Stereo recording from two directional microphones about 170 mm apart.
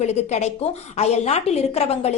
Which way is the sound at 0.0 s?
40° left (ahead or behind).